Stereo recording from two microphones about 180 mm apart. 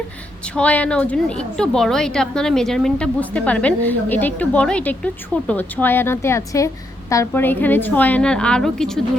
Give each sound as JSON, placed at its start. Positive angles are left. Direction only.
{"t": 0.4, "sound": "a woman's voice", "side_deg": 5}